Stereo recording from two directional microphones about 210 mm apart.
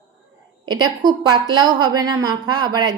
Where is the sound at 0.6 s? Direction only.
20° right (ahead or behind).